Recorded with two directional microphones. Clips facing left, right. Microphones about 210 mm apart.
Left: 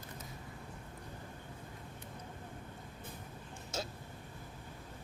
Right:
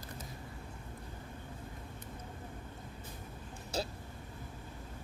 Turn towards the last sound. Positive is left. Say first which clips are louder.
# right 4 dB
turn(degrees=-35)  # may be behind; listen again after turning